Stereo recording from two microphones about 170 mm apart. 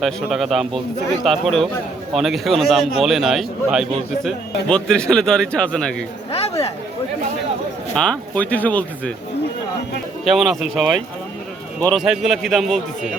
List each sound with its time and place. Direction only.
0.0 s speech: centre (ahead or behind)
6.3 s speech: 35° left (ahead or behind)
7.9 s speech: 5° left (ahead or behind)
10.2 s speech: centre (ahead or behind)
11.9 s speech: centre (ahead or behind)